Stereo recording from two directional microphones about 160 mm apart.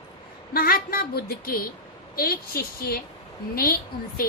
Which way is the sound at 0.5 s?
65° left (ahead or behind).